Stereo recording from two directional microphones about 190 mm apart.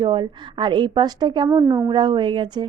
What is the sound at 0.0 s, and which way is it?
A woman's voice, 25° right (ahead or behind).